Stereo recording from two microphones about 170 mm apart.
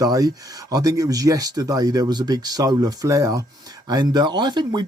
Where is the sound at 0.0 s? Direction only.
20° right (ahead or behind).